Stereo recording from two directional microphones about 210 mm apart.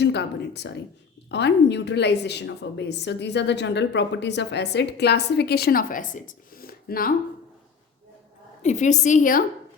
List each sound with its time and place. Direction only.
0.0 s a woman's voice: 55° left (ahead or behind)
8.6 s a woman's voice: 35° left (ahead or behind)